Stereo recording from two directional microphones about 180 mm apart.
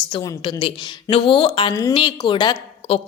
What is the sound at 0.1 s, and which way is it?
A woman's voice, 30° left (ahead or behind).